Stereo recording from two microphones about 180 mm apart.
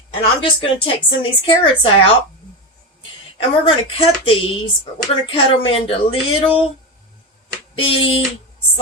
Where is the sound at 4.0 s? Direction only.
30° left (ahead or behind).